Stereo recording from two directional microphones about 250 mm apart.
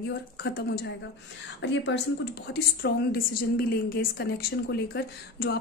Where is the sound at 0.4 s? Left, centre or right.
Left.